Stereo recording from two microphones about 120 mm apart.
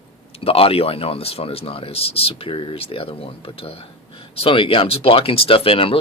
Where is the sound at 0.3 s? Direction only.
50° left (ahead or behind).